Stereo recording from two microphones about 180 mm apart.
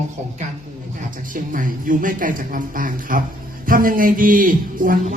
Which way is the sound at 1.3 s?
50° right (ahead or behind).